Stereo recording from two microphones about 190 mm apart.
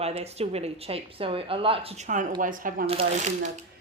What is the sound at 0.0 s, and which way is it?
A woman's voice, 35° right (ahead or behind).